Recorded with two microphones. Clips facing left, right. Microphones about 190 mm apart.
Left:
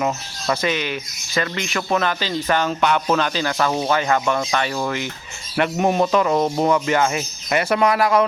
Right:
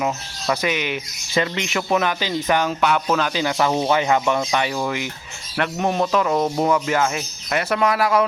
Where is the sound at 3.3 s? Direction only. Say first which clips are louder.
Right 1 dB; 15° right (ahead or behind).